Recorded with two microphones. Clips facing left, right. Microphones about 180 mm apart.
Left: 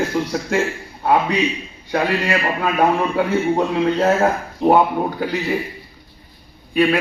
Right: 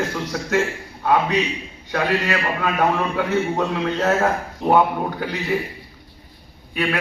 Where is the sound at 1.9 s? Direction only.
30° left (ahead or behind).